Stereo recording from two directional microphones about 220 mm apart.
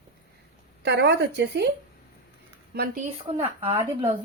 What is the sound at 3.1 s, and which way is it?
Speech, 25° right (ahead or behind).